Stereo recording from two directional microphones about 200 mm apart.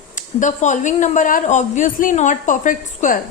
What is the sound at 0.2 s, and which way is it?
A woman's voice, 40° left (ahead or behind).